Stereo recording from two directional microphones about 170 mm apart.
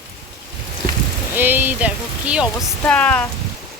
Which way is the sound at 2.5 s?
10° left (ahead or behind).